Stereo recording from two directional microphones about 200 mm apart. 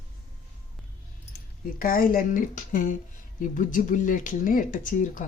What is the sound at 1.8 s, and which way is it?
A woman's voice, 45° left (ahead or behind).